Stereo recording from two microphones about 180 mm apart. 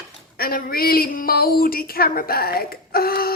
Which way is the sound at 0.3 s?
55° left (ahead or behind).